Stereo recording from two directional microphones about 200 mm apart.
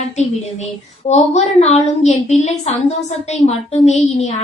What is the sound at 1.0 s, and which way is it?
A woman's voice, 35° left (ahead or behind).